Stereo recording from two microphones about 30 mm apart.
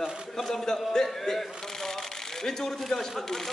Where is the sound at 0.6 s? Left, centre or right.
Centre.